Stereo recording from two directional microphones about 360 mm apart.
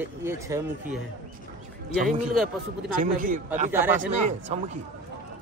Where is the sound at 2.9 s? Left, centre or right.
Right.